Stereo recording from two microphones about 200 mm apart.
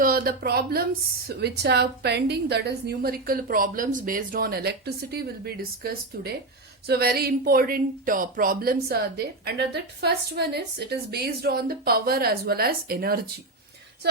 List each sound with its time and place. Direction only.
0.0 s a woman's voice: 50° right (ahead or behind)